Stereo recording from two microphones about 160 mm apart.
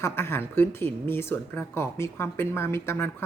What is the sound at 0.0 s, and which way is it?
A man's voice, 15° left (ahead or behind).